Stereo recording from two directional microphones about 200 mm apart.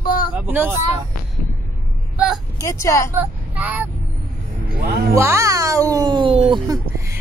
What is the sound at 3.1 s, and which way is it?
Speech, 10° right (ahead or behind).